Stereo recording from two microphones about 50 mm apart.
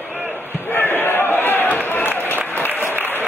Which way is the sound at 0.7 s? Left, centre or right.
Left.